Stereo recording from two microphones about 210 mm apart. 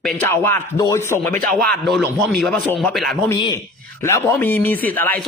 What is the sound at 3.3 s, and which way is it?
A man's voice, 15° left (ahead or behind).